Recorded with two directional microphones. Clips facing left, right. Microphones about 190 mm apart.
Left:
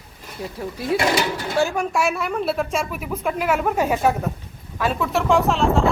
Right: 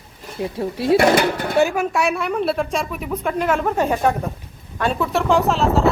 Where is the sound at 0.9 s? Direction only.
60° right (ahead or behind).